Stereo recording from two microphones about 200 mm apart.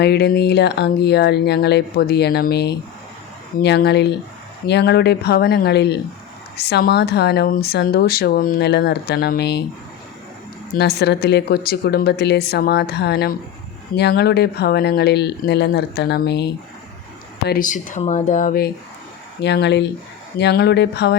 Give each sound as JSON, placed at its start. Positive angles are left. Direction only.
{"t": 0.0, "sound": "speech", "side_deg": 55}
{"t": 10.8, "sound": "speech", "side_deg": 55}
{"t": 19.4, "sound": "speech", "side_deg": 60}